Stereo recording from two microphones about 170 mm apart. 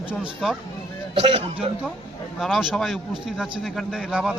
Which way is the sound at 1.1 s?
30° right (ahead or behind).